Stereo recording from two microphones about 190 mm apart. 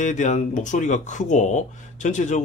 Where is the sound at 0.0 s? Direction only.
40° left (ahead or behind).